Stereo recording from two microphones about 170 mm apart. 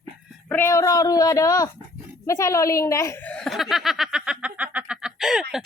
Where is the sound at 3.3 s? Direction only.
Centre (ahead or behind).